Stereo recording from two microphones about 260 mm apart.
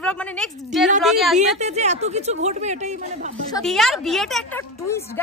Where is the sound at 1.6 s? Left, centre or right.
Right.